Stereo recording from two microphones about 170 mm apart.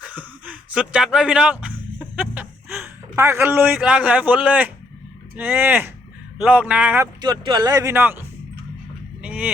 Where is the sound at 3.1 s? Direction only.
15° right (ahead or behind).